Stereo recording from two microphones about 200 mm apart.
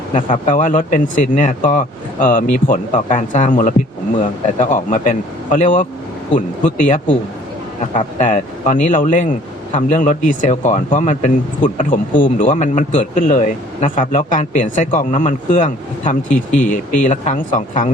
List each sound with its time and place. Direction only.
0.4 s speech: 40° left (ahead or behind)